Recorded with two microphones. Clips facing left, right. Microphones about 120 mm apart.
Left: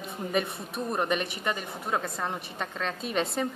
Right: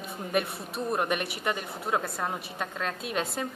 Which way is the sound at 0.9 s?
10° right (ahead or behind).